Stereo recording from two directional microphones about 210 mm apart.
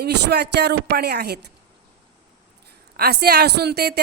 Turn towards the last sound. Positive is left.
turn(degrees=-50)  # may be behind; listen again after turning